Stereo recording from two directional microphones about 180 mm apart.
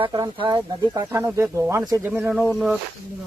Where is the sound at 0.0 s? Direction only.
25° right (ahead or behind).